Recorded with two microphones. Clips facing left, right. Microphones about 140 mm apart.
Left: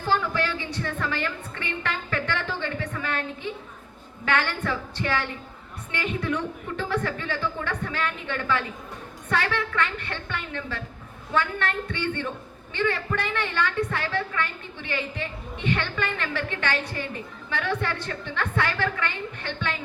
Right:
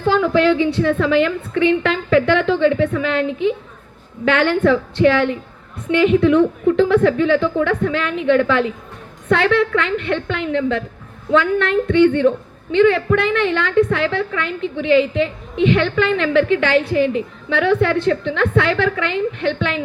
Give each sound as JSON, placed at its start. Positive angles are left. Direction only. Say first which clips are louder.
{"t": 0.0, "sound": "a woman's voice", "louder": "right 11 dB", "side_deg": -90}